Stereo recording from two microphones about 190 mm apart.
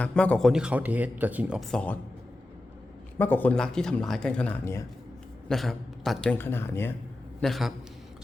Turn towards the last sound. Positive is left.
turn(degrees=0)  # may be behind; listen again after turning